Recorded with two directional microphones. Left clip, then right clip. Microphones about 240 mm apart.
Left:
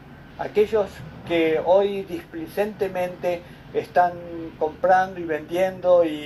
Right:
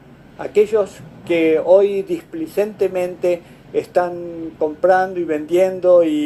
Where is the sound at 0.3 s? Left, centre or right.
Right.